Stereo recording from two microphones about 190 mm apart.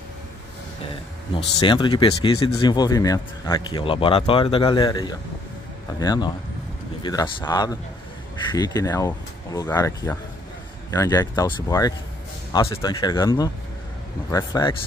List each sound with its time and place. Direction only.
1.3 s speech: 25° left (ahead or behind)